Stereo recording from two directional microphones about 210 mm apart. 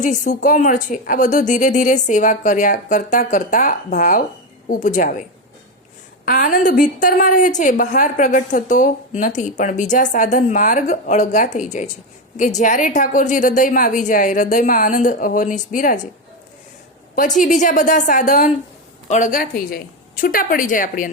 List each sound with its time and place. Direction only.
0.0 s a woman's voice: 35° left (ahead or behind)
6.2 s a woman's voice: 40° left (ahead or behind)
17.2 s a woman's voice: 40° left (ahead or behind)